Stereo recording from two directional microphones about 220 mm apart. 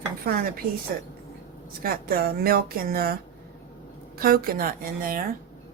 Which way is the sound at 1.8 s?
40° right (ahead or behind).